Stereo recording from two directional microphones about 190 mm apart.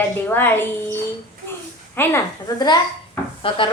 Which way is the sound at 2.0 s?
15° left (ahead or behind).